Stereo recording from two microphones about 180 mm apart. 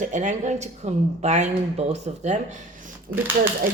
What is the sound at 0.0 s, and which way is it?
A woman's voice, 40° right (ahead or behind).